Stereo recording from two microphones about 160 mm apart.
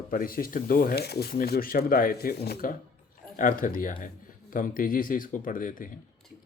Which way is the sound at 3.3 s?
60° left (ahead or behind).